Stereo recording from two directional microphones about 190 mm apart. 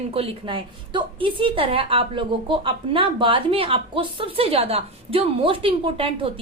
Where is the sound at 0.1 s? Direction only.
30° right (ahead or behind).